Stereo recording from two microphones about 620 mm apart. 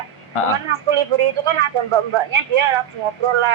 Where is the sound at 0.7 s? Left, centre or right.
Right.